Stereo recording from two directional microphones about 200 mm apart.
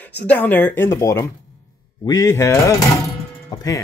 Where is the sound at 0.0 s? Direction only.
5° left (ahead or behind).